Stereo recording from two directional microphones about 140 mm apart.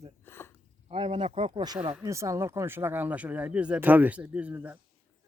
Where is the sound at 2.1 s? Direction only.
20° right (ahead or behind).